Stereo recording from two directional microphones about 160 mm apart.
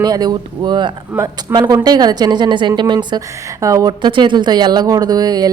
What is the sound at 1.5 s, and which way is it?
A woman's voice, 25° right (ahead or behind).